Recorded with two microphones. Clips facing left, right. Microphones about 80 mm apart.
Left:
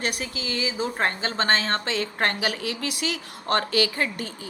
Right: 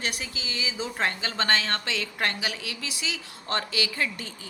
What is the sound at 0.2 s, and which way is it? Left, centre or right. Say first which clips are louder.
A woman's voice: left 5 dB; left.